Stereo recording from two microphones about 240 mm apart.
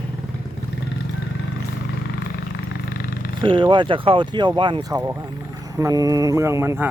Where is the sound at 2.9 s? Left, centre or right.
Left.